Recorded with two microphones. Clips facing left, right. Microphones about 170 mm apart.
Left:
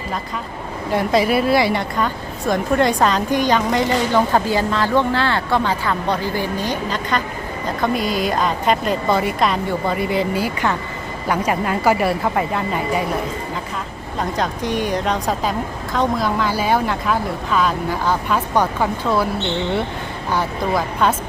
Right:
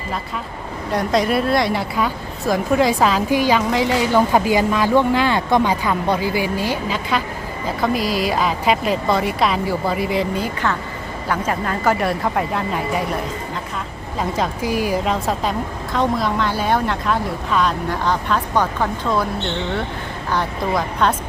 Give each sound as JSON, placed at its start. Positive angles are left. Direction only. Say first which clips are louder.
{"t": 0.9, "sound": "a woman's voice", "louder": "left 1 dB", "side_deg": 0}
{"t": 14.2, "sound": "a woman's voice", "louder": "even", "side_deg": 0}
{"t": 20.3, "sound": "a woman's voice", "louder": "left 1 dB", "side_deg": 0}